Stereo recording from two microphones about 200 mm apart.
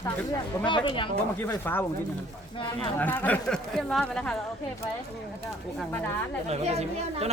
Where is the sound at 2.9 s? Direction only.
10° left (ahead or behind).